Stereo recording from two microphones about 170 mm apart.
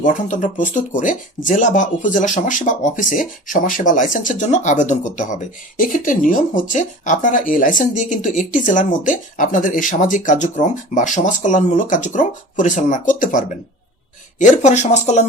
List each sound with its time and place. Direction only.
0.0 s speech: 50° left (ahead or behind)